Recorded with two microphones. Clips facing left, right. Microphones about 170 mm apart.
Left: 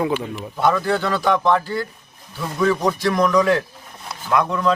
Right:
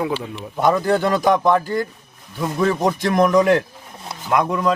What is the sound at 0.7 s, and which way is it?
Speech, 15° right (ahead or behind).